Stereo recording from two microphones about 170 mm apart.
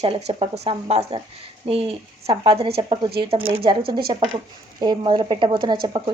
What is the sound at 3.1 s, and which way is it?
Speech, 65° right (ahead or behind).